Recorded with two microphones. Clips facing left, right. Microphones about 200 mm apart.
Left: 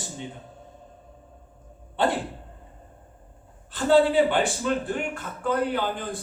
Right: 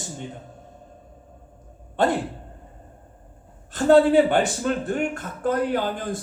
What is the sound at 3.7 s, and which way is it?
A man's voice, 45° right (ahead or behind).